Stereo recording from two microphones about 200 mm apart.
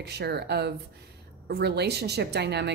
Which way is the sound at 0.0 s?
55° right (ahead or behind).